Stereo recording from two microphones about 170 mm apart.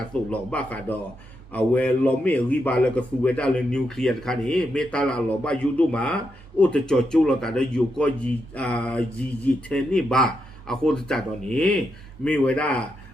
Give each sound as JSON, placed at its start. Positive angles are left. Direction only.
{"t": 0.3, "sound": "a man's voice", "side_deg": 5}